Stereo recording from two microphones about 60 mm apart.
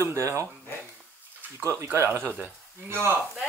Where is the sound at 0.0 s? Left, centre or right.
Right.